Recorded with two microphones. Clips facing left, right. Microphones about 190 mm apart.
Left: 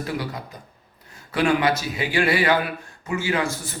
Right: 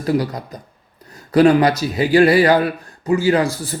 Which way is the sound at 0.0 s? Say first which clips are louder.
Right 9 dB; 40° right (ahead or behind).